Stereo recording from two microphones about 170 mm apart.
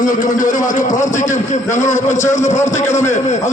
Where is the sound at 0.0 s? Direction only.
50° left (ahead or behind).